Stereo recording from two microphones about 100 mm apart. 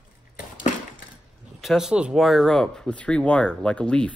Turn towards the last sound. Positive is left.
turn(degrees=10)  # may be behind; listen again after turning